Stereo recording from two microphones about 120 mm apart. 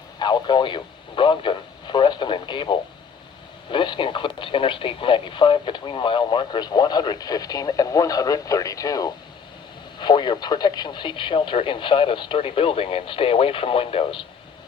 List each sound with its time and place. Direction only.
0.2 s speech: 35° left (ahead or behind)